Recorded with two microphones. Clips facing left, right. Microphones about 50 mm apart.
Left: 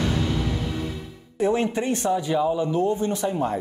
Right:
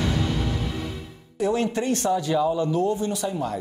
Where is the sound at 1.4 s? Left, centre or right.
Left.